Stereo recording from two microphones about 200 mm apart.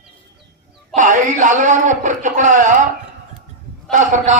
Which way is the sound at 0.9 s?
40° right (ahead or behind).